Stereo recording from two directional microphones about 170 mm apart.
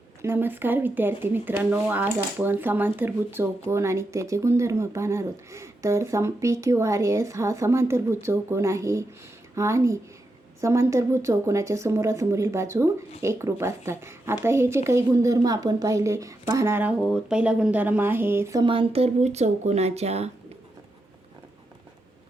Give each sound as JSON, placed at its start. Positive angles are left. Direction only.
{"t": 0.2, "sound": "a woman's voice", "side_deg": -15}
{"t": 17.0, "sound": "speech", "side_deg": 0}
{"t": 18.6, "sound": "speech", "side_deg": -30}